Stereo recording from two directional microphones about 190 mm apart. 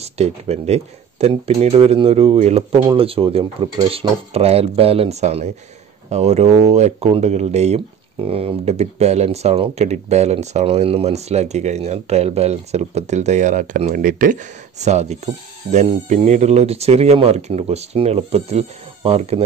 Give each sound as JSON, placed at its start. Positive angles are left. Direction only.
{"t": 0.0, "sound": "speech", "side_deg": -35}